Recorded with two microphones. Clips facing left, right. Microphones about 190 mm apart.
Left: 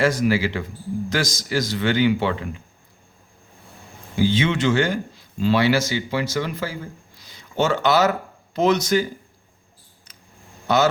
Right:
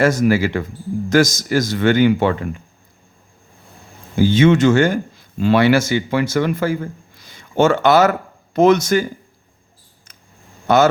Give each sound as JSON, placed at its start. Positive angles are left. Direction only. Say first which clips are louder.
{"t": 0.0, "sound": "speech", "louder": "right 4 dB", "side_deg": -45}
{"t": 4.2, "sound": "speech", "louder": "right 7 dB", "side_deg": -45}
{"t": 7.2, "sound": "a sound", "louder": "right 7 dB", "side_deg": -55}
{"t": 8.5, "sound": "speech", "louder": "right 5 dB", "side_deg": -50}
{"t": 10.7, "sound": "speech", "louder": "right 5 dB", "side_deg": -50}